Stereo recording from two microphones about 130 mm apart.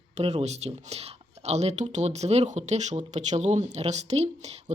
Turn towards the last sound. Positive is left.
turn(degrees=-55)  # may be behind; listen again after turning